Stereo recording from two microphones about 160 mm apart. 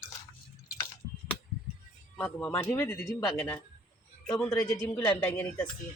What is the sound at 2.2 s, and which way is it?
Music, 5° left (ahead or behind).